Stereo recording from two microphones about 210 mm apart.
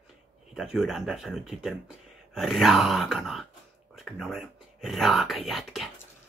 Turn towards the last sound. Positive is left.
turn(degrees=0)  # may be behind; listen again after turning